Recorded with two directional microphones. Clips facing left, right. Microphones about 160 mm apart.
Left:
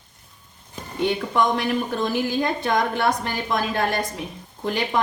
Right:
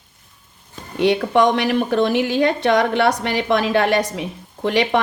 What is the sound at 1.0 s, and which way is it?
A woman's voice, 75° right (ahead or behind).